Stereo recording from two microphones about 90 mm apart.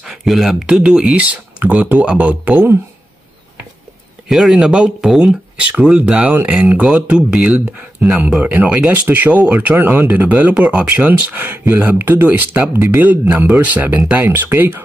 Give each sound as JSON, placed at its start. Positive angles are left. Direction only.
{"t": 0.0, "sound": "speech", "side_deg": -5}
{"t": 4.3, "sound": "speech", "side_deg": -5}